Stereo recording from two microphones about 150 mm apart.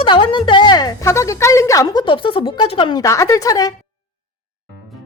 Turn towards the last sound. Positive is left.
turn(degrees=25)  # may be behind; listen again after turning